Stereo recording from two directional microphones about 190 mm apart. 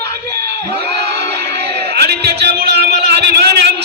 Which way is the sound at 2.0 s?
60° right (ahead or behind).